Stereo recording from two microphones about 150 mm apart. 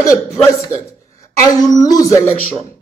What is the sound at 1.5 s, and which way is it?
Speech, 25° left (ahead or behind).